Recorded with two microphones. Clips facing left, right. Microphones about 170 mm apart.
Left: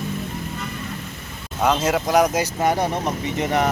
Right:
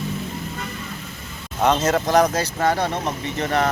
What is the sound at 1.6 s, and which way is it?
Speech, 5° left (ahead or behind).